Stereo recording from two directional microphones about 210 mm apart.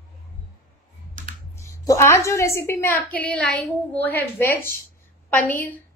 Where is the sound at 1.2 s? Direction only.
40° right (ahead or behind).